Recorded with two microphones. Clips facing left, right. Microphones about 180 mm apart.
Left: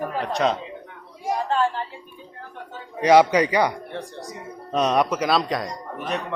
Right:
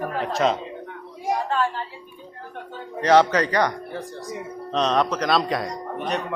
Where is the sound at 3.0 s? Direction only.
10° left (ahead or behind).